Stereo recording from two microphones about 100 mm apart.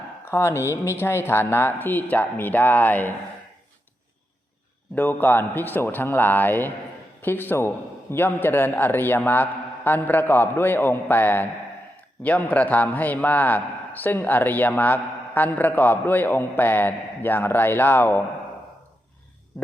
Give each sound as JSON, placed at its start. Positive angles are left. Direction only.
{"t": 0.3, "sound": "a man's voice", "side_deg": 25}
{"t": 4.9, "sound": "a man's voice", "side_deg": 20}